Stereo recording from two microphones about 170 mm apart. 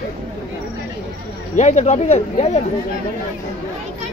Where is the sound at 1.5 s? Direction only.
45° left (ahead or behind).